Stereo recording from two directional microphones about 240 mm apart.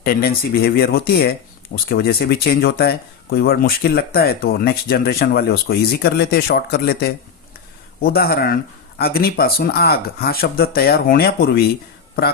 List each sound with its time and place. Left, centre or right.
0.0 s speech: left